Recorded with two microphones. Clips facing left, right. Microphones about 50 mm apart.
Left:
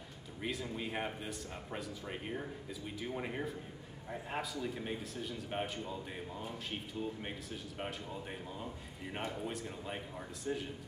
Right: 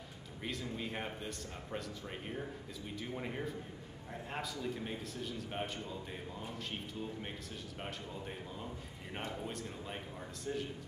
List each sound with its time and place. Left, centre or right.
0.4 s a man's voice: centre
7.8 s a man's voice: centre